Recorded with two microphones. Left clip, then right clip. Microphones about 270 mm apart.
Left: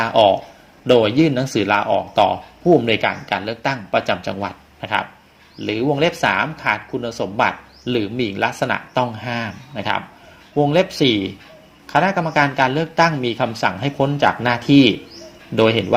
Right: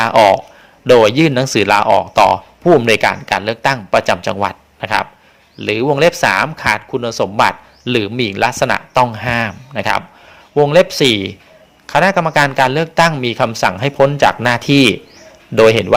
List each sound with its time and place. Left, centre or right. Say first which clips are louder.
0.0 s a man's voice: right 5 dB; right